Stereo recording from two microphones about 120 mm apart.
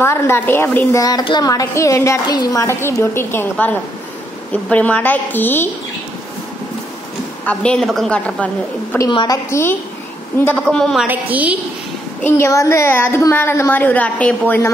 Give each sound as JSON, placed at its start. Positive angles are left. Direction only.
{"t": 0.0, "sound": "a woman's voice", "side_deg": 20}
{"t": 1.0, "sound": "speech", "side_deg": 35}
{"t": 1.5, "sound": "a woman's voice", "side_deg": 25}
{"t": 7.4, "sound": "a woman's voice", "side_deg": 10}
{"t": 9.1, "sound": "speech", "side_deg": 40}
{"t": 9.5, "sound": "a woman's voice", "side_deg": 20}
{"t": 10.7, "sound": "a woman's voice", "side_deg": 5}
{"t": 11.1, "sound": "a woman's voice", "side_deg": -15}
{"t": 12.2, "sound": "a woman's voice", "side_deg": 20}